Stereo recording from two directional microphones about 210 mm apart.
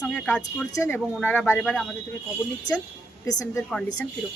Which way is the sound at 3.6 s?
5° left (ahead or behind).